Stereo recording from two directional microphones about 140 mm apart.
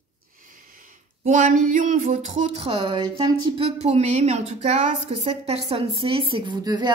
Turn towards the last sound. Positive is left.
turn(degrees=-30)  # may be behind; listen again after turning